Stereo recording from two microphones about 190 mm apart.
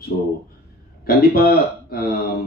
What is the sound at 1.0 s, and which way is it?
Speech, 50° left (ahead or behind).